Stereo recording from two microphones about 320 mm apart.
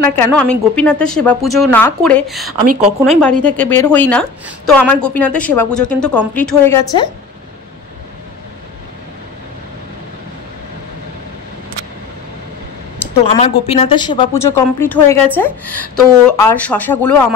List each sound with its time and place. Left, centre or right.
0.0 s a woman's voice: centre
2.6 s speech: right
3.1 s a woman's voice: centre
13.1 s a woman's voice: centre